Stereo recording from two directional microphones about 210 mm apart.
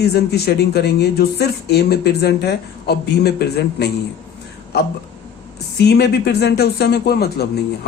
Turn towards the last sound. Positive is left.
turn(degrees=50)  # may be behind; listen again after turning